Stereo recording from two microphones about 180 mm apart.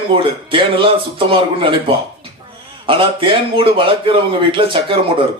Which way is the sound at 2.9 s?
30° right (ahead or behind).